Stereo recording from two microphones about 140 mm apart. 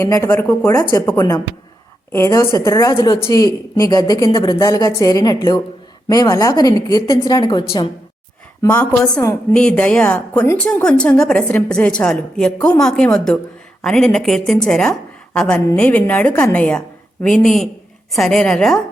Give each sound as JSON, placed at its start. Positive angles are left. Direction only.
{"t": 0.0, "sound": "a woman's voice", "side_deg": 20}
{"t": 8.6, "sound": "a woman's voice", "side_deg": 10}